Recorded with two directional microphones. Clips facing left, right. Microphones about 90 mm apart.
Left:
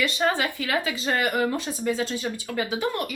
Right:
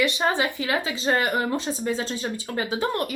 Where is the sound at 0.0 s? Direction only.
20° right (ahead or behind).